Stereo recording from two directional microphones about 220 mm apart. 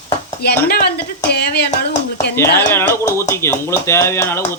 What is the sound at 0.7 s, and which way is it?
Speech, 45° left (ahead or behind).